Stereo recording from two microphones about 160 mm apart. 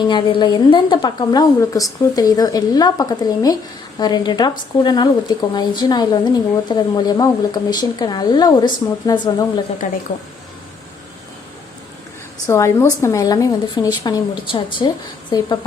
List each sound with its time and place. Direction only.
0.1 s a woman's voice: 30° left (ahead or behind)
9.8 s a woman's voice: 55° left (ahead or behind)
12.5 s a woman's voice: 20° left (ahead or behind)